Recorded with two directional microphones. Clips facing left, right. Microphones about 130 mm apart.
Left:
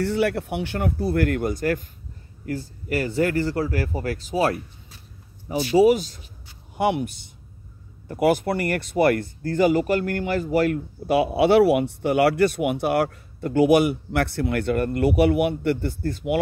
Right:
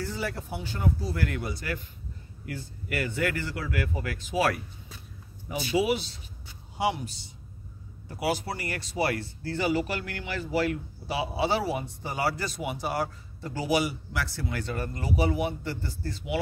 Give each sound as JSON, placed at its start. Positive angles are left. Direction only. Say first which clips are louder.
{"t": 0.0, "sound": "a man's voice", "louder": "left 11 dB", "side_deg": 65}
{"t": 6.8, "sound": "speech", "louder": "left 6 dB", "side_deg": 60}